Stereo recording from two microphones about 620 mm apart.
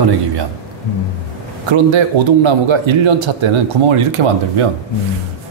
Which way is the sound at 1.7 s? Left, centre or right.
Right.